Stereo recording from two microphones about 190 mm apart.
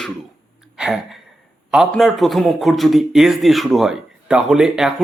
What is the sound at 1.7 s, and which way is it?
A man's voice, centre (ahead or behind).